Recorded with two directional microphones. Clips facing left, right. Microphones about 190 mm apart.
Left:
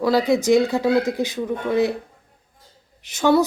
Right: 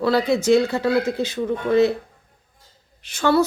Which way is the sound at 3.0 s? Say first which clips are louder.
Left 1 dB; 20° left (ahead or behind).